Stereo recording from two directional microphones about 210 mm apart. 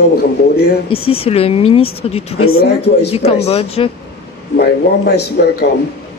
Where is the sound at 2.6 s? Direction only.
50° left (ahead or behind).